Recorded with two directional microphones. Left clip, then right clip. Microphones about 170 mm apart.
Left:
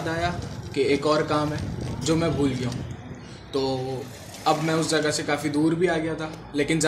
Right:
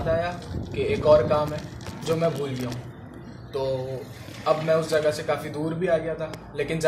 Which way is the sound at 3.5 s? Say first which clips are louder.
Left 1 dB; 55° left (ahead or behind).